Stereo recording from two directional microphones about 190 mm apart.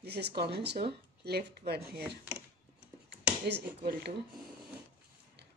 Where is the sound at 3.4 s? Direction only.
60° right (ahead or behind).